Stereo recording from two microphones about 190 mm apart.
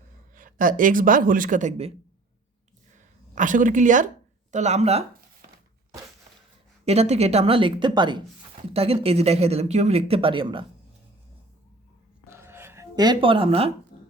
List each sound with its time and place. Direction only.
0.3 s speech: 45° right (ahead or behind)
2.9 s a sound: 40° right (ahead or behind)
4.5 s speech: 35° right (ahead or behind)
6.8 s speech: 35° right (ahead or behind)
12.3 s a sound: 15° right (ahead or behind); by 13.7 s 30° right (ahead or behind)
13.9 s beatboxing: 50° left (ahead or behind)